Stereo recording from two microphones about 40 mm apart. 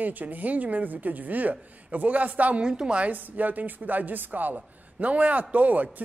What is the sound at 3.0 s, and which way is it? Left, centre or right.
Speech, right.